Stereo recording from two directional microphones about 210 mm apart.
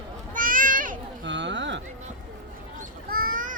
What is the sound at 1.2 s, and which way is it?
Speech, 60° right (ahead or behind).